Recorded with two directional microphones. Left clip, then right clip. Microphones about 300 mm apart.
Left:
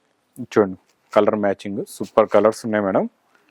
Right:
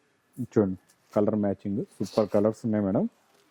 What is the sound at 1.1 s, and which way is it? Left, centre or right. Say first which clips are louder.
Speech: left 9 dB; centre.